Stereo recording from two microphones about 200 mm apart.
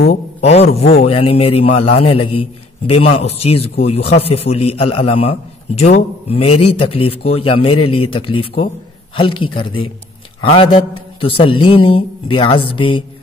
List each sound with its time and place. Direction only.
0.0 s a man's voice: 35° left (ahead or behind)